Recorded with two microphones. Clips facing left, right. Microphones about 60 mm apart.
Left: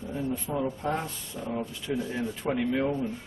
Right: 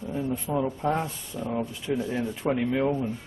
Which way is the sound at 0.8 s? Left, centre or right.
Centre.